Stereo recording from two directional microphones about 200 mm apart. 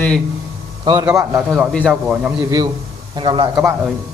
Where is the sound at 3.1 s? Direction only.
25° right (ahead or behind).